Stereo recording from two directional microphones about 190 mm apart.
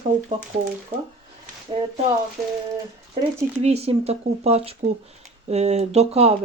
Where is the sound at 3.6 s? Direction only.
35° right (ahead or behind).